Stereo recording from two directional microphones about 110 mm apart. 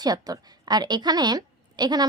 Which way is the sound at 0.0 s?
35° right (ahead or behind).